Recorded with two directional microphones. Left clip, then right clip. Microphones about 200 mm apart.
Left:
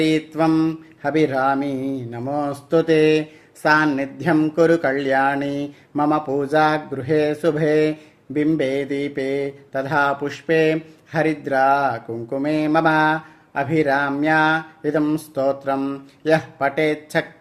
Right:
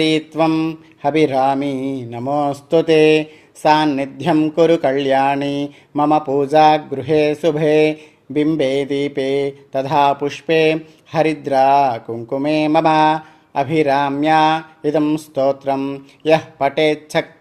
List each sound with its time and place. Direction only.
0.0 s mantra: 30° right (ahead or behind)